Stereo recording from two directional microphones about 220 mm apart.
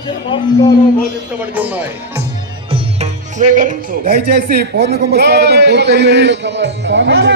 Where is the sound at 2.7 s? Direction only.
30° right (ahead or behind).